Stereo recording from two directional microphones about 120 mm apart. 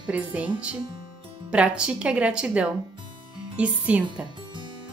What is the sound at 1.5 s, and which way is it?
A woman's voice, 10° right (ahead or behind).